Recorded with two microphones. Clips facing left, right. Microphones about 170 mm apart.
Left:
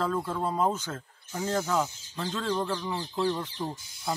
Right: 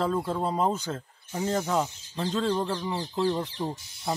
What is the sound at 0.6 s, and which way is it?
Speech, 10° right (ahead or behind).